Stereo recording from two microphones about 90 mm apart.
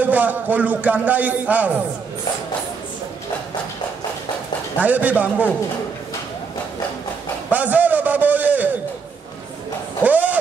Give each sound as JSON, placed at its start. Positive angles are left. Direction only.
{"t": 0.0, "sound": "speech", "side_deg": -20}
{"t": 4.7, "sound": "speech", "side_deg": -15}
{"t": 7.4, "sound": "a sound", "side_deg": -15}
{"t": 10.0, "sound": "speech", "side_deg": -20}